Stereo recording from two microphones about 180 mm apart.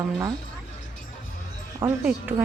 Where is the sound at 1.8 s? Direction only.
15° right (ahead or behind).